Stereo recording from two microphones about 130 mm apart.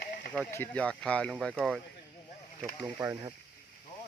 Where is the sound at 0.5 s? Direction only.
15° left (ahead or behind).